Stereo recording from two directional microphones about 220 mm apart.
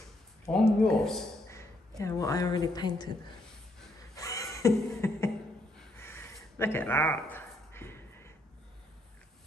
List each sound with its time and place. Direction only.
0.5 s speech: centre (ahead or behind)
1.5 s speech: 15° left (ahead or behind)
4.1 s a sound: 15° left (ahead or behind)